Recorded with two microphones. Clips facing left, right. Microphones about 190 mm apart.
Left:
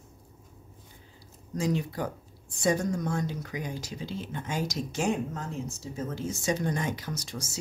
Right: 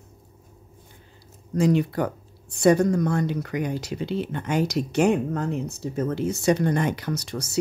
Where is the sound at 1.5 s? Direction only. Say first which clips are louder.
Right 8 dB; 65° right (ahead or behind).